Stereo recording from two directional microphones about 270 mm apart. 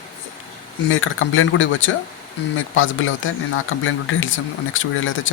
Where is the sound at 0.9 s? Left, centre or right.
Left.